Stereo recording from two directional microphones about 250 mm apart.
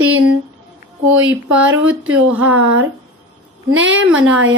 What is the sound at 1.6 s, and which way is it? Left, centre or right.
Speech, right.